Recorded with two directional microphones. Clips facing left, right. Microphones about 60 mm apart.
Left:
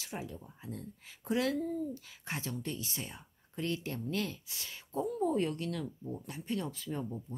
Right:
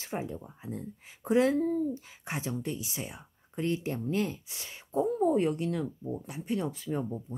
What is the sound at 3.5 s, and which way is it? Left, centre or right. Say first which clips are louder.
A woman's voice: right 5 dB; right.